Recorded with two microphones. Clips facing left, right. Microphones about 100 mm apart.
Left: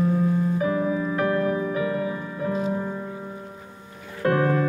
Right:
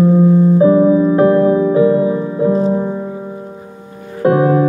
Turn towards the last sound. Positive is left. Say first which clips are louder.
# right 10 dB
turn(degrees=-20)  # may be behind; listen again after turning